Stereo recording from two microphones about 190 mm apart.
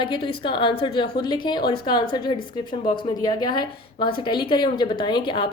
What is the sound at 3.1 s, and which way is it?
A woman's voice, 20° left (ahead or behind).